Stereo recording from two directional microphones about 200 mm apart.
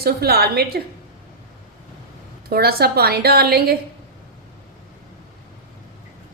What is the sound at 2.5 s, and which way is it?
A woman's voice, 50° right (ahead or behind).